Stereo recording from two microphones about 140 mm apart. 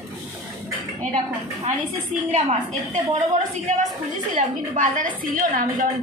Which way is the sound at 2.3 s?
55° right (ahead or behind).